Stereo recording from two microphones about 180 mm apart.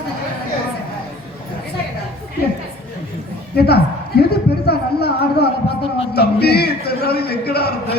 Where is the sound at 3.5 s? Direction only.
60° left (ahead or behind).